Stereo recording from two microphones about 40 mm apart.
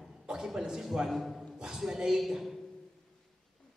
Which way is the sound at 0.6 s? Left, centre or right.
Centre.